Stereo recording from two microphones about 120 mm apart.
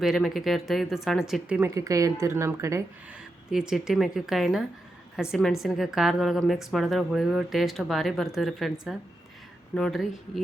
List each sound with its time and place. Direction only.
0.0 s a woman's voice: centre (ahead or behind)
1.7 s a woman's voice: 25° right (ahead or behind)
3.5 s a woman's voice: 5° right (ahead or behind)